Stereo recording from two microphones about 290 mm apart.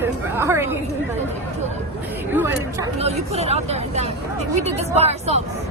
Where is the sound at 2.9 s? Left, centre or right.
Right.